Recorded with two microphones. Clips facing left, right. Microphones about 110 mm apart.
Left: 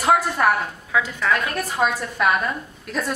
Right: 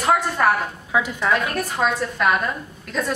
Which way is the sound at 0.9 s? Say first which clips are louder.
Right 1 dB; 15° right (ahead or behind).